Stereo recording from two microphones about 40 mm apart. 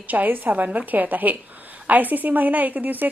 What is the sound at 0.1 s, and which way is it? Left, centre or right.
A woman's voice, right.